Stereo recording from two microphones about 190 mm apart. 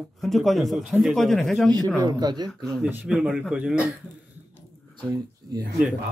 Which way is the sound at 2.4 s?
5° left (ahead or behind).